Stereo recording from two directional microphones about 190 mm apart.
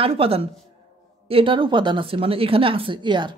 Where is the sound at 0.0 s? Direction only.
30° right (ahead or behind).